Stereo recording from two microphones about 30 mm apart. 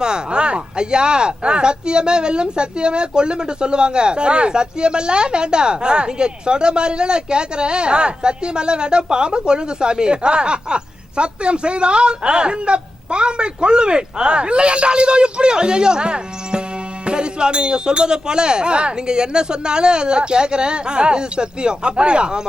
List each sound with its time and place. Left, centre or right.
0.0 s speech: right